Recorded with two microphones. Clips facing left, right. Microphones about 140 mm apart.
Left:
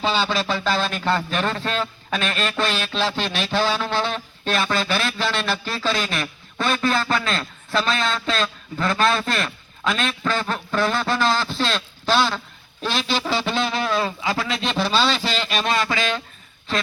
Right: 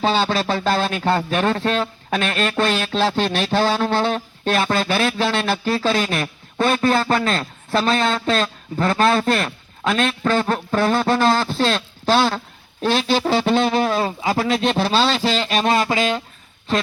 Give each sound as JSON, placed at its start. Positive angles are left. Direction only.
{"t": 0.0, "sound": "speech", "side_deg": -50}